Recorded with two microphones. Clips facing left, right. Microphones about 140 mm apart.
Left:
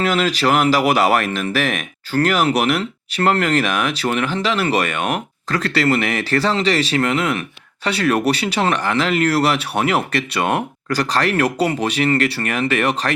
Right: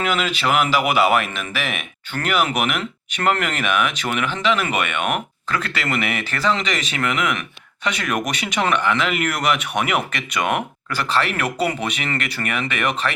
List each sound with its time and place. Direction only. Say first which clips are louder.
0.0 s speech: left 4 dB; 40° left (ahead or behind)